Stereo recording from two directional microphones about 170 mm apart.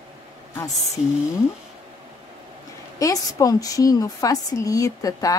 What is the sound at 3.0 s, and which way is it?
A woman's voice, 20° left (ahead or behind).